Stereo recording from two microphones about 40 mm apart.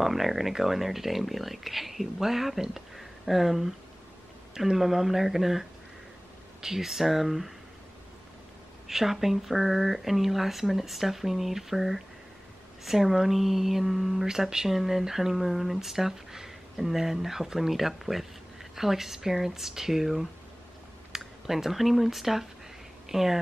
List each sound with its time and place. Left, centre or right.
0.0 s speech: centre
8.8 s speech: centre
14.2 s speech: centre
21.1 s a sound: centre
21.5 s speech: centre